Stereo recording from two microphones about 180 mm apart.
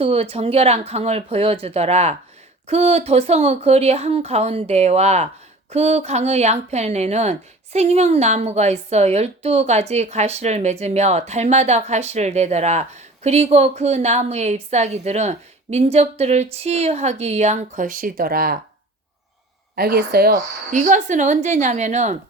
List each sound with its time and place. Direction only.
0.0 s a woman's voice: 35° right (ahead or behind); by 18.5 s 55° right (ahead or behind)
19.7 s speech: 60° right (ahead or behind); by 22.2 s 40° right (ahead or behind)